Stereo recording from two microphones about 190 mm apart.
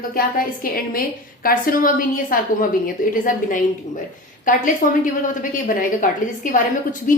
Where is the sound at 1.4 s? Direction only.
50° left (ahead or behind).